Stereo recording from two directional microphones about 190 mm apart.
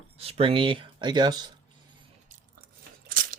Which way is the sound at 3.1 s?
50° right (ahead or behind).